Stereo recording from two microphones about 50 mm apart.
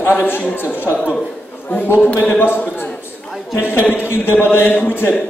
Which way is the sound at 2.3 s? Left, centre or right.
Left.